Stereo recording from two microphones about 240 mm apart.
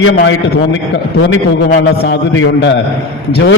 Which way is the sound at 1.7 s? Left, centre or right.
Left.